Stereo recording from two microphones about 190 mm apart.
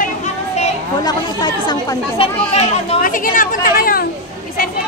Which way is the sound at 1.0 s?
20° left (ahead or behind).